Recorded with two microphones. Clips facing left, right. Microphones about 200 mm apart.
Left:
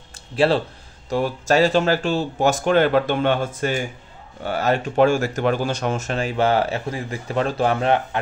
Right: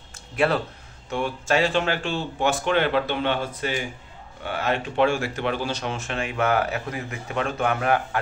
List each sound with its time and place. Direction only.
0.4 s speech: 30° left (ahead or behind)